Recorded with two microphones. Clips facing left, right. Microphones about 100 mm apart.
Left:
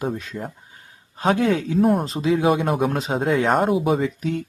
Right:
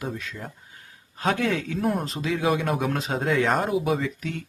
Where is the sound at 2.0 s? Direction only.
25° left (ahead or behind).